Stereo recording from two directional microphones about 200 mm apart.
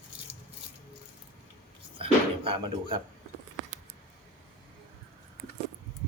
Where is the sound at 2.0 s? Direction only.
25° right (ahead or behind).